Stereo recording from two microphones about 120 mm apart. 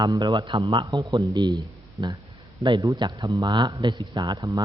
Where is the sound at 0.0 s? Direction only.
40° right (ahead or behind).